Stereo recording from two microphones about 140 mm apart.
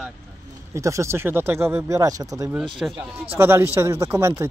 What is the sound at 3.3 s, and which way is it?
Speech, 15° right (ahead or behind).